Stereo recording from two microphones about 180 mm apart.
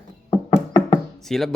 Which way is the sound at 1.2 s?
Centre (ahead or behind).